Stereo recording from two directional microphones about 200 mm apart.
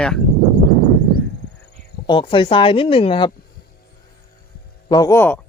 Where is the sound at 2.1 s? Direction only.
25° left (ahead or behind).